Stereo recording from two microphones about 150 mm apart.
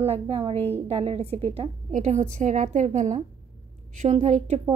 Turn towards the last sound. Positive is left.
turn(degrees=-50)  # may be behind; listen again after turning